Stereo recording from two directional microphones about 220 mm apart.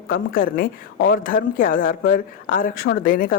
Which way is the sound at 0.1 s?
40° left (ahead or behind).